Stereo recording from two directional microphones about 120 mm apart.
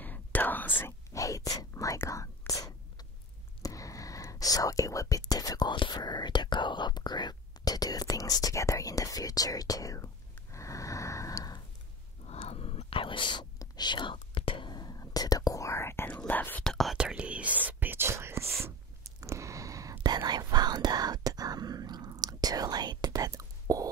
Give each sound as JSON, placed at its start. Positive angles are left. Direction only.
{"t": 0.0, "sound": "whispering", "side_deg": 15}
{"t": 1.1, "sound": "whispering", "side_deg": 30}
{"t": 3.6, "sound": "speech", "side_deg": 30}
{"t": 12.3, "sound": "whispering", "side_deg": 55}
{"t": 16.2, "sound": "speech", "side_deg": 15}
{"t": 16.7, "sound": "speech", "side_deg": -5}
{"t": 18.6, "sound": "whispering", "side_deg": -25}